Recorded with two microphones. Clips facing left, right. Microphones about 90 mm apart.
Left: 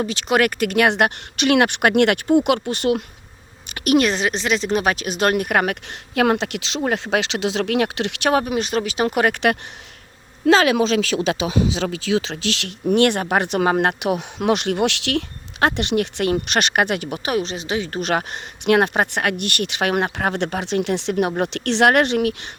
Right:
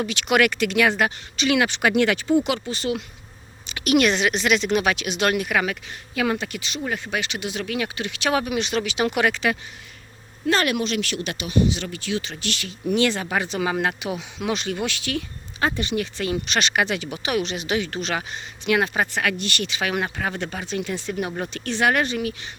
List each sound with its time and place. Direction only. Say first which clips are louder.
0.0 s speech: left 1 dB; 35° left (ahead or behind); by 3.0 s 60° left (ahead or behind)
3.7 s speech: left 2 dB; 45° left (ahead or behind); by 8.3 s 75° left (ahead or behind)
8.3 s speech: left 3 dB; 40° left (ahead or behind)
9.3 s speech: left 5 dB; 65° left (ahead or behind)
10.4 s speech: left 7 dB; 90° left
11.9 s speech: left 6 dB; 90° left
12.9 s speech: left 5 dB; 60° left (ahead or behind)
17.3 s speech: even; 35° left (ahead or behind)
18.0 s speech: left 5 dB; 55° left (ahead or behind)